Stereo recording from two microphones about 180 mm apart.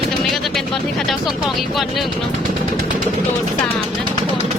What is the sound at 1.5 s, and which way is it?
Speech, centre (ahead or behind).